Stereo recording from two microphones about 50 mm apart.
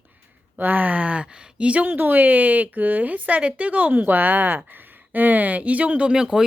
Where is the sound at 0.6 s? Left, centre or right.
Right.